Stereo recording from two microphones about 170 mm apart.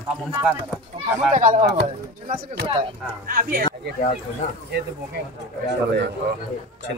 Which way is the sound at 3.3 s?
55° right (ahead or behind).